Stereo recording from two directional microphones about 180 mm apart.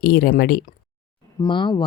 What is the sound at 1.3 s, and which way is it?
Speech, 25° left (ahead or behind).